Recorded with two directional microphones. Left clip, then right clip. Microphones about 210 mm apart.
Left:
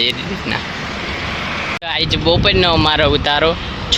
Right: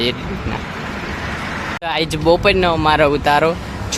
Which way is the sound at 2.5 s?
Centre (ahead or behind).